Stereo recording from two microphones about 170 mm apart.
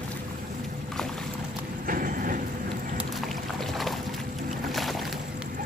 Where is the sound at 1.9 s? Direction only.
55° right (ahead or behind).